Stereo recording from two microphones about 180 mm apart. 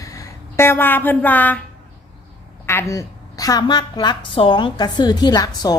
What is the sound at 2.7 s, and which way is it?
A woman's voice, 15° left (ahead or behind).